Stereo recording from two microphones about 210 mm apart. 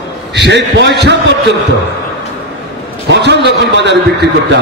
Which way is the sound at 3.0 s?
55° right (ahead or behind).